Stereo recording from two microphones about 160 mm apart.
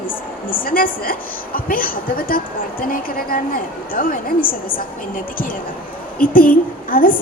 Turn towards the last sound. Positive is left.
turn(degrees=60)  # may be behind; listen again after turning